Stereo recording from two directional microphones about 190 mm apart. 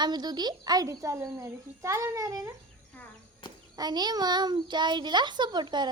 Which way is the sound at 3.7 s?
20° right (ahead or behind).